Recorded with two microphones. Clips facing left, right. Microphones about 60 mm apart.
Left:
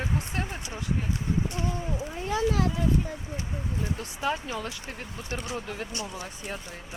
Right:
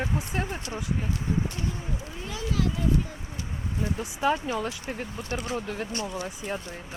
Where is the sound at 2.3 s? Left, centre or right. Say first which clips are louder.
Left 4 dB; left.